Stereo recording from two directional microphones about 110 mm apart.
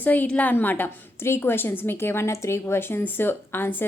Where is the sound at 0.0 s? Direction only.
15° left (ahead or behind).